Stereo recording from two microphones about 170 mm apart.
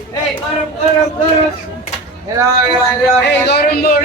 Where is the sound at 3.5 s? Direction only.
65° left (ahead or behind).